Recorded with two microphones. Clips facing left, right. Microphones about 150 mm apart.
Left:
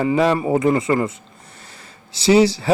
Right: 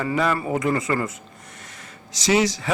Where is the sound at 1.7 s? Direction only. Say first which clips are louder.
Right 1 dB; 30° left (ahead or behind).